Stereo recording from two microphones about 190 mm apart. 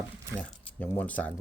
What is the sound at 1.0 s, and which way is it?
Speech, 10° left (ahead or behind).